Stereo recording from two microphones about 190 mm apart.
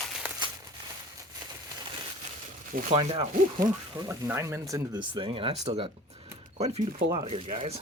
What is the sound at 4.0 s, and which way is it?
Speech, 15° right (ahead or behind).